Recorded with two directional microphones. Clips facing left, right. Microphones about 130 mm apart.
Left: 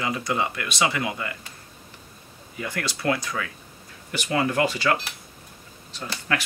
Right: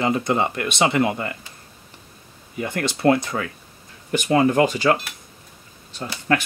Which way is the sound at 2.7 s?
25° right (ahead or behind).